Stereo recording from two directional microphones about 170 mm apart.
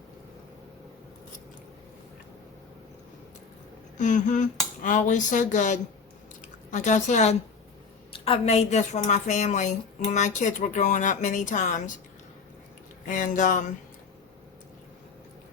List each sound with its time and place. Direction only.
3.9 s a woman's voice: 45° left (ahead or behind)
13.1 s a woman's voice: 50° left (ahead or behind)